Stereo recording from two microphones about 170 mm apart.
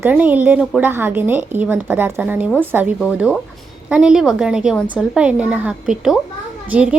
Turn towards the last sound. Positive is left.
turn(degrees=-10)  # may be behind; listen again after turning